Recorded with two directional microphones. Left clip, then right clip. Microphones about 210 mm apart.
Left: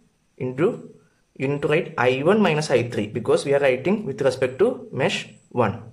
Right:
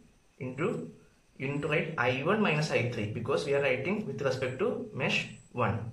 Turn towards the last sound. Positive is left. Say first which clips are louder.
# left 9 dB
turn(degrees=40)  # may be behind; listen again after turning